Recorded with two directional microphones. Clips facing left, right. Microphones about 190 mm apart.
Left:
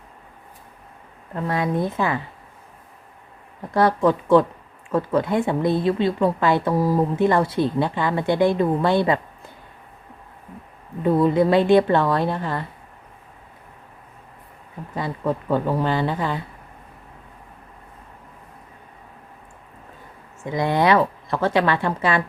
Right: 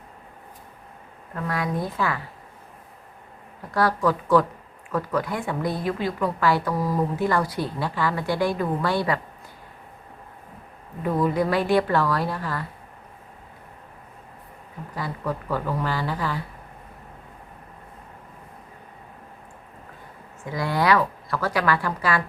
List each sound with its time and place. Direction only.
1.4 s speech: 25° left (ahead or behind)
3.8 s speech: 25° left (ahead or behind)
11.0 s speech: 25° left (ahead or behind)
14.9 s speech: 25° left (ahead or behind)
20.4 s speech: 20° left (ahead or behind)